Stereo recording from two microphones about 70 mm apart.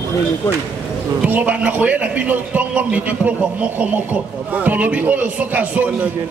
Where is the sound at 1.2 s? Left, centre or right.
Right.